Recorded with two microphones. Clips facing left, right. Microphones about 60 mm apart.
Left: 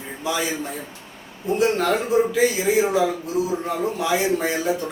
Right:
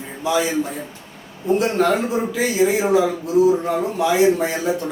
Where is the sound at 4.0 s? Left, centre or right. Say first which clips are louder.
Right 7 dB; centre.